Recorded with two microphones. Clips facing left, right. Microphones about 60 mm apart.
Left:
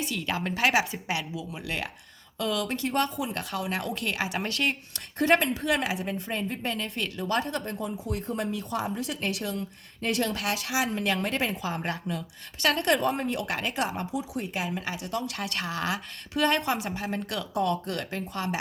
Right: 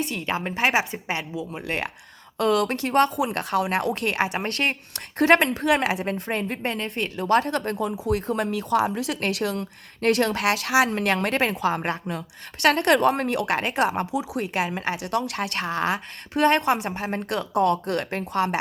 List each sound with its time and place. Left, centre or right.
0.0 s speech: right
0.3 s a woman's voice: right
1.4 s speech: right
2.4 s speech: right
11.8 s speech: right
12.6 s speech: right
14.0 s a woman's voice: right
15.6 s speech: right
16.4 s speech: right
16.9 s speech: right